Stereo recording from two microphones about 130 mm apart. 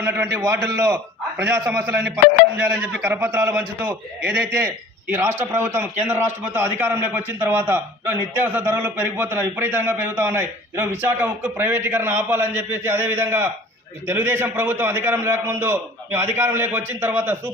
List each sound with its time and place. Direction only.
0.0 s a man's voice: 20° right (ahead or behind)